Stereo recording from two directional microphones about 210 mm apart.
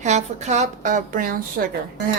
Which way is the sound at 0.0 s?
35° right (ahead or behind).